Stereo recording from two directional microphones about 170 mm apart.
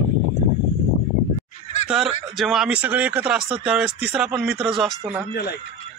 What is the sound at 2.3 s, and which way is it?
Speech, centre (ahead or behind).